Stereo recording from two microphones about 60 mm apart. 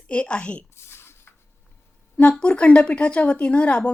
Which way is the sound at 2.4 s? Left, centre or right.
Left.